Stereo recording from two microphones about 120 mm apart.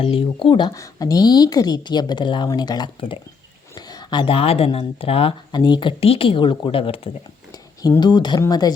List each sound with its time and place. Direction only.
0.0 s speech: 50° left (ahead or behind)
0.7 s a woman's voice: 30° left (ahead or behind); by 5.3 s 50° left (ahead or behind)
5.5 s speech: 40° left (ahead or behind)
7.8 s a woman's voice: 35° left (ahead or behind)